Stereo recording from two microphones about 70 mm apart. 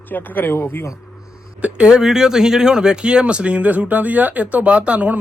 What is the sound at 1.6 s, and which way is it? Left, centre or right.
Speech, centre.